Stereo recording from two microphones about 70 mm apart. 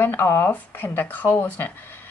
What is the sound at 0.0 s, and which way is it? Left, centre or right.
Speech, left.